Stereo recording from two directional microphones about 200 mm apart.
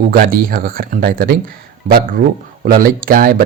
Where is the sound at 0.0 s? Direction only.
45° right (ahead or behind).